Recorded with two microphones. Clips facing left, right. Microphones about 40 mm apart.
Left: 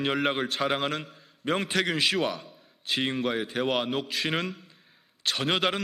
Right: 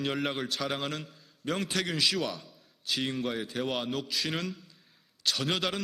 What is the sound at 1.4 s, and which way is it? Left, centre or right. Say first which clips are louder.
Speech: left 5 dB; left.